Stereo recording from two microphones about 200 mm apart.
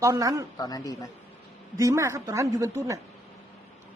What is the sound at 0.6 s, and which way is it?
Speech, 15° left (ahead or behind).